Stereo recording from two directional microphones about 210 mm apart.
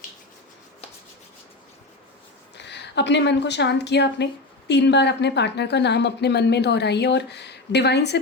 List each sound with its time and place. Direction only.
2.6 s a woman's voice: 55° left (ahead or behind)